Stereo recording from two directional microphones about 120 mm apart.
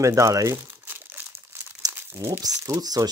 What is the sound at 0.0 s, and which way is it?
Crumpling, 25° right (ahead or behind).